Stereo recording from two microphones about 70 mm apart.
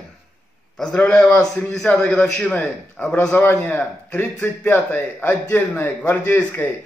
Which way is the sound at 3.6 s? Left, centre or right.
Left.